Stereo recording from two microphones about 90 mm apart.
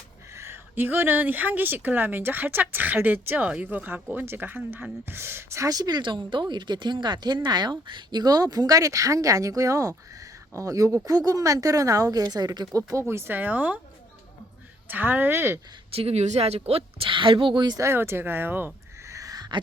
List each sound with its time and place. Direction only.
0.3 s speech: 30° right (ahead or behind)
14.8 s speech: 20° right (ahead or behind)
15.9 s a woman's voice: 90° right; by 17.7 s 60° right (ahead or behind)
17.7 s speech: 30° right (ahead or behind)
19.1 s a sound: 45° right (ahead or behind)